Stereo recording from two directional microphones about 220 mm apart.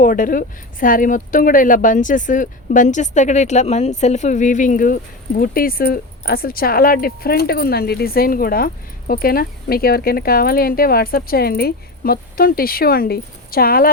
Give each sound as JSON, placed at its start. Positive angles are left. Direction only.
{"t": 0.0, "sound": "speech", "side_deg": 40}